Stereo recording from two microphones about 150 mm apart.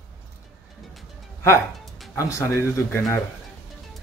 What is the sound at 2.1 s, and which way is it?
Speech, 20° left (ahead or behind).